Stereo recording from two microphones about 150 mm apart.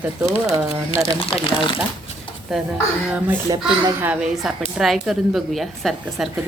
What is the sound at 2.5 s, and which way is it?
A woman's voice, centre (ahead or behind).